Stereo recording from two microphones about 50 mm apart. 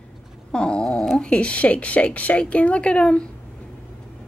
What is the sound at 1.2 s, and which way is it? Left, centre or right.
Speech, left.